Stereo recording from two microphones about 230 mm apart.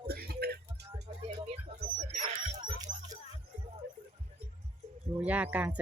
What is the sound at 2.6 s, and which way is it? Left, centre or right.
Music, centre.